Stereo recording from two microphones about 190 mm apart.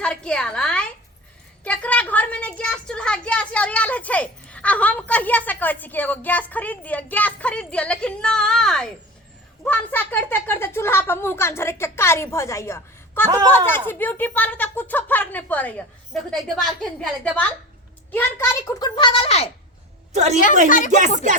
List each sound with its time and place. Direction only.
0.0 s a woman's voice: 5° left (ahead or behind); by 19.5 s 30° left (ahead or behind)
20.7 s speech: 45° left (ahead or behind)